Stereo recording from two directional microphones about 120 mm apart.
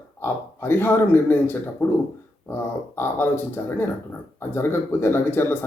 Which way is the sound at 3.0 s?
20° left (ahead or behind).